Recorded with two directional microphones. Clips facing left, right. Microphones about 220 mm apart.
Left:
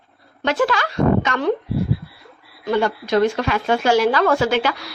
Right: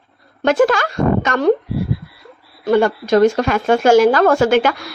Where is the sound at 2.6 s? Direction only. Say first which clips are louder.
Right 5 dB; 45° right (ahead or behind).